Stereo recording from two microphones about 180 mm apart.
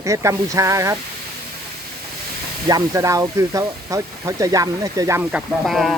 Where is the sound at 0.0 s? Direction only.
15° right (ahead or behind).